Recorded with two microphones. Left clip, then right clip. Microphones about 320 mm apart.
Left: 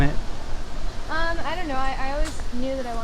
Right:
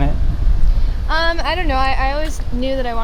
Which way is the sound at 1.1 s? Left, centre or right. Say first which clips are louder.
Right 9 dB; right.